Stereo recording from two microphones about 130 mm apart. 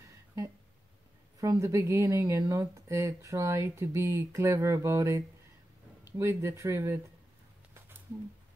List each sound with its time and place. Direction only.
1.4 s speech: 25° right (ahead or behind)